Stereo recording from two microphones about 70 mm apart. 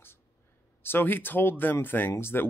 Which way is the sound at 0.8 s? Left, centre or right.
Left.